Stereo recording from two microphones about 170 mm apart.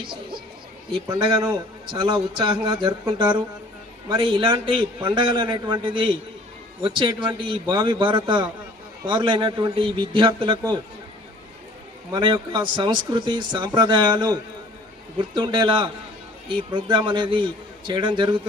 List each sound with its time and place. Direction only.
1.2 s speech: 25° right (ahead or behind)
12.1 s speech: 30° right (ahead or behind)
15.4 s speech: 25° right (ahead or behind)